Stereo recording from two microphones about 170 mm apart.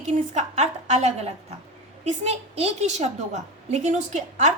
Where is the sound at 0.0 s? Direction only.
40° right (ahead or behind).